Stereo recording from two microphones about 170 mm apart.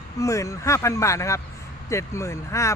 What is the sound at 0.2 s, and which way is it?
Speech, 20° left (ahead or behind).